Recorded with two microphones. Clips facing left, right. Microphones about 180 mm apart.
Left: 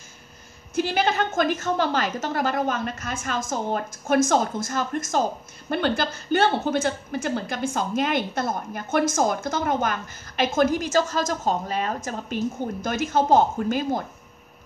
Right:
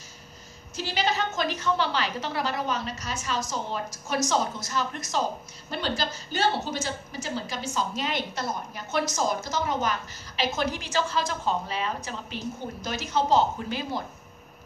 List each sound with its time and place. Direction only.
0.7 s a woman's voice: 55° left (ahead or behind)